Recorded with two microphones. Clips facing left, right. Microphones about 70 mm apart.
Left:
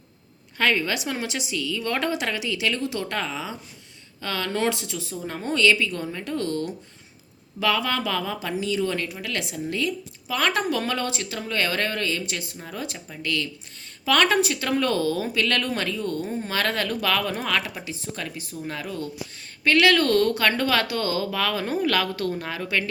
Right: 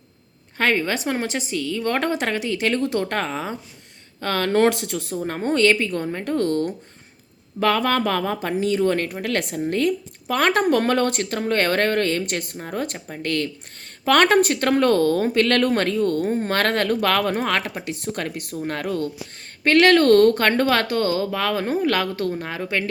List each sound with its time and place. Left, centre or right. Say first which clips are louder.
0.5 s speech: right 2 dB; right